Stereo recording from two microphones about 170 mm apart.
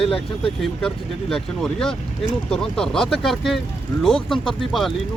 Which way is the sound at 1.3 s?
5° left (ahead or behind).